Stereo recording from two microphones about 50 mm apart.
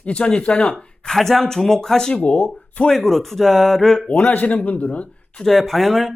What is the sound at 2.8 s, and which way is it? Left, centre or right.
A man's voice, centre.